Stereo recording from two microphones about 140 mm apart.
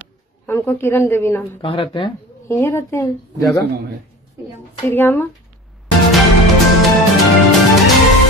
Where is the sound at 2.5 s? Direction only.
20° left (ahead or behind).